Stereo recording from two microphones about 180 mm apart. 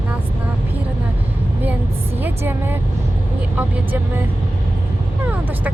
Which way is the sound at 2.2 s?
10° right (ahead or behind).